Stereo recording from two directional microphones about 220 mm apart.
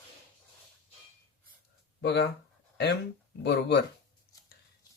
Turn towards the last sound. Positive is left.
turn(degrees=50)  # may be behind; listen again after turning